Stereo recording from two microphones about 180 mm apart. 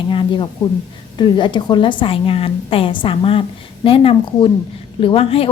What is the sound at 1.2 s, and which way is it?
A woman's voice, 25° left (ahead or behind).